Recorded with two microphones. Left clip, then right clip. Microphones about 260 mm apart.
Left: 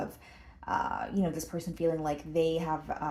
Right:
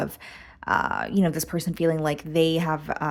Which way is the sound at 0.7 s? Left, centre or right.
Right.